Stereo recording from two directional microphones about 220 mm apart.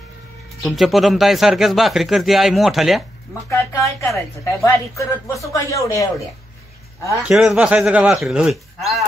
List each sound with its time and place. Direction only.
0.6 s a man's voice: centre (ahead or behind)
3.4 s speech: 15° left (ahead or behind)
4.1 s a man's voice: centre (ahead or behind)
4.9 s speech: 15° left (ahead or behind)
7.2 s a man's voice: 5° right (ahead or behind)